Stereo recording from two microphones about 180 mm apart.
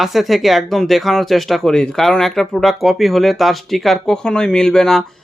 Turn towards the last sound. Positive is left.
turn(degrees=5)  # may be behind; listen again after turning